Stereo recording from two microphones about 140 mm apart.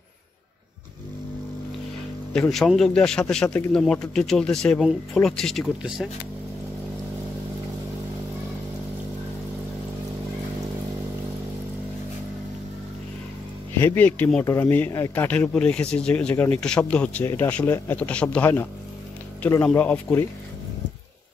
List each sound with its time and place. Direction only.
2.3 s a man's voice: 5° left (ahead or behind)
13.8 s speech: 10° left (ahead or behind)